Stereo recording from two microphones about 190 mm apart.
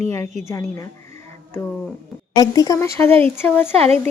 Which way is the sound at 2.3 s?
20° left (ahead or behind).